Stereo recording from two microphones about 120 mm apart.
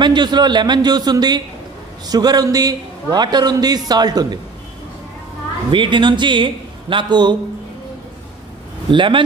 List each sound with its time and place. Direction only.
0.0 s a man's voice: 40° right (ahead or behind)
5.7 s a man's voice: 40° right (ahead or behind)
8.9 s speech: 45° right (ahead or behind)